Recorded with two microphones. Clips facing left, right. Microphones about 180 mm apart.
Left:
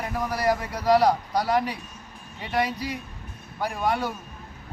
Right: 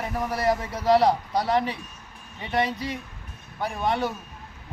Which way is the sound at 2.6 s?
25° right (ahead or behind).